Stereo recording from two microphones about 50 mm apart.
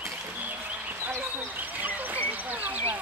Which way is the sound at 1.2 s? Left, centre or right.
Right.